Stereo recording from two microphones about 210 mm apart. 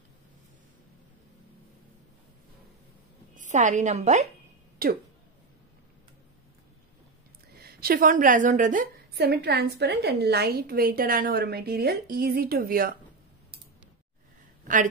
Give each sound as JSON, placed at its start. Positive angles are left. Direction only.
{"t": 3.3, "sound": "a woman's voice", "side_deg": -35}
{"t": 4.8, "sound": "speech", "side_deg": -45}
{"t": 7.5, "sound": "a woman's voice", "side_deg": -45}